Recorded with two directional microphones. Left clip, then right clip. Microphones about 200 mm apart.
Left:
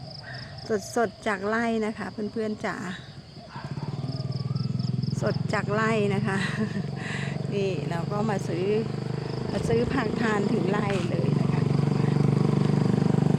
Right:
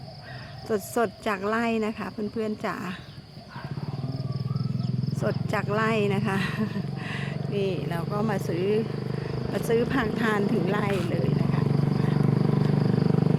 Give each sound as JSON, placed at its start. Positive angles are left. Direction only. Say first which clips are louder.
{"t": 0.7, "sound": "speech", "louder": "even", "side_deg": -5}
{"t": 5.1, "sound": "speech", "louder": "even", "side_deg": 0}
{"t": 11.6, "sound": "vehicle", "louder": "even", "side_deg": 55}